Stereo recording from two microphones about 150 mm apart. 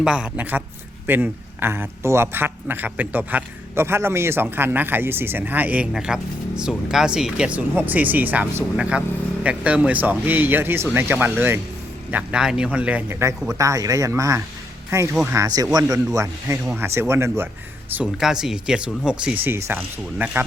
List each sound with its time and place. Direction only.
0.0 s speech: 5° right (ahead or behind)
17.9 s speech: 5° right (ahead or behind)